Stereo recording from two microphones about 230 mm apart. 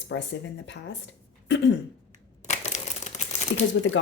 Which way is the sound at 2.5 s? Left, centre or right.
Left.